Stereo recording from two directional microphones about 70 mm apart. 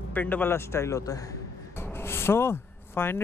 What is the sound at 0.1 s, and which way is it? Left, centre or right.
Speech, left.